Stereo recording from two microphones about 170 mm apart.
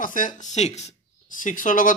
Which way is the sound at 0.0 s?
50° left (ahead or behind).